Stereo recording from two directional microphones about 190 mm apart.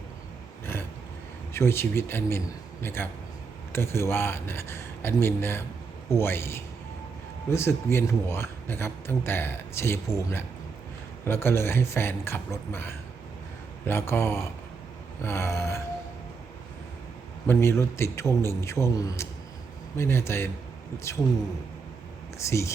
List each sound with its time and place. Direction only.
0.6 s a sound: 10° left (ahead or behind)
1.5 s a man's voice: 15° left (ahead or behind)
17.4 s a man's voice: 15° left (ahead or behind)
22.4 s a man's voice: 15° left (ahead or behind)